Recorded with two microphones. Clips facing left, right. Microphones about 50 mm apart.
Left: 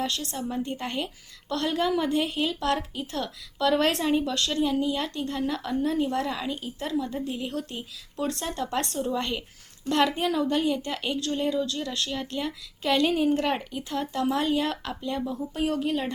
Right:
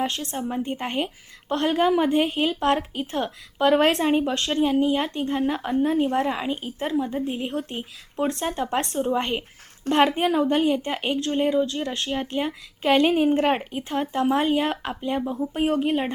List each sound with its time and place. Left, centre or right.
0.0 s a woman's voice: right